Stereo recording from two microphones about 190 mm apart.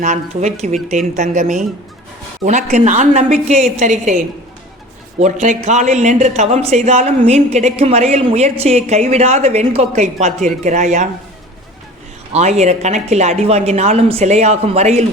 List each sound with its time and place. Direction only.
0.0 s speech: 40° right (ahead or behind)
5.2 s speech: 40° right (ahead or behind)
12.3 s speech: 35° right (ahead or behind)